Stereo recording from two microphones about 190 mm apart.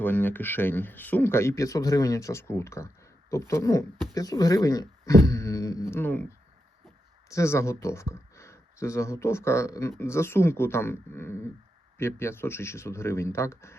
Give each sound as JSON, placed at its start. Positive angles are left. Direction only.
{"t": 0.0, "sound": "speech", "side_deg": 10}
{"t": 5.2, "sound": "a sound", "side_deg": 15}
{"t": 7.3, "sound": "speech", "side_deg": 15}